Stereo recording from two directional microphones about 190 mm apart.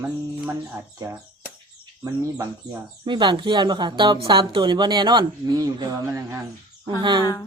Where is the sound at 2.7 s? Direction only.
25° right (ahead or behind).